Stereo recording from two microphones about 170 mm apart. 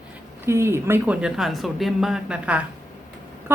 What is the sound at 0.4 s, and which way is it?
A woman's voice, 15° right (ahead or behind).